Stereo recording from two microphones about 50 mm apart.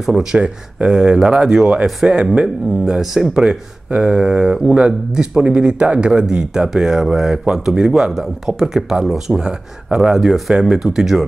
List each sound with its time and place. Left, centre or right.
0.0 s speech: centre
0.4 s speech: right
3.4 s speech: centre
9.4 s speech: centre